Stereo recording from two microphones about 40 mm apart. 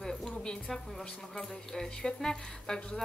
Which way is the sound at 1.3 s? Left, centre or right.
Centre.